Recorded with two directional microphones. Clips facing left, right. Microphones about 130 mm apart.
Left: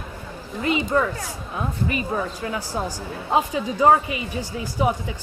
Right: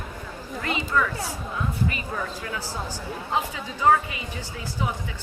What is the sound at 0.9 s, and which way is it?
Speech, 35° left (ahead or behind).